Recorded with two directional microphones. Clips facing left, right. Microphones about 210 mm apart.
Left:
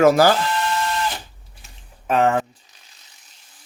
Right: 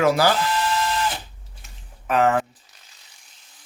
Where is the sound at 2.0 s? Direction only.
30° left (ahead or behind).